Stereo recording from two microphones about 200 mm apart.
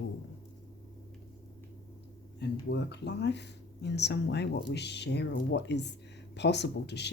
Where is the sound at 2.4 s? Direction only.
60° left (ahead or behind).